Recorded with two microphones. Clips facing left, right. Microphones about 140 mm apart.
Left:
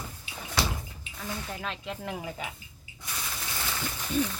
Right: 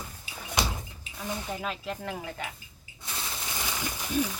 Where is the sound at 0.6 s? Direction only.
20° right (ahead or behind).